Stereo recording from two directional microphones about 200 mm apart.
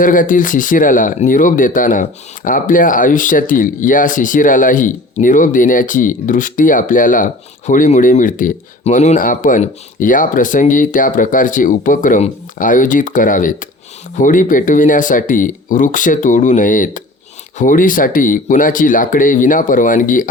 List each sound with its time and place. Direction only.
0.0 s speech: 40° left (ahead or behind)